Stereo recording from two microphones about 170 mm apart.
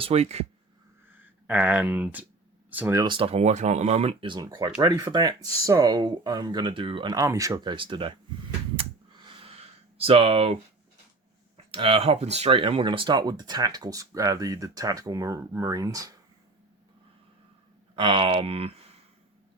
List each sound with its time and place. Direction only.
0.0 s speech: 35° right (ahead or behind)
1.2 s speech: 10° right (ahead or behind)
3.0 s speech: 30° right (ahead or behind)
8.7 s a sound: 30° right (ahead or behind)
10.0 s speech: 35° right (ahead or behind)
17.9 s speech: 30° right (ahead or behind)